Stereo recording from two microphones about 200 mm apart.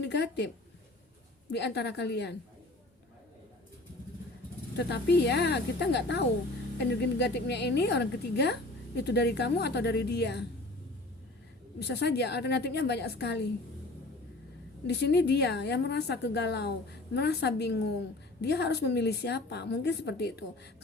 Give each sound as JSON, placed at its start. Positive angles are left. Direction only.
{"t": 0.0, "sound": "a woman's voice", "side_deg": 55}
{"t": 4.8, "sound": "a woman's voice", "side_deg": 55}
{"t": 11.8, "sound": "a woman's voice", "side_deg": 55}
{"t": 14.8, "sound": "a woman's voice", "side_deg": 55}